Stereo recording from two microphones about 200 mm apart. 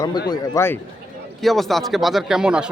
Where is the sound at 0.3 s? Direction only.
15° left (ahead or behind).